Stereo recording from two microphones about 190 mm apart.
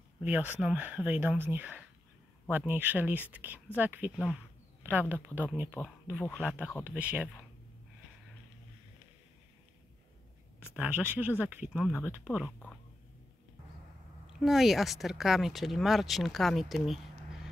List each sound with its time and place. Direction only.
0.2 s speech: 10° right (ahead or behind)
10.7 s speech: 5° right (ahead or behind)
14.4 s speech: centre (ahead or behind)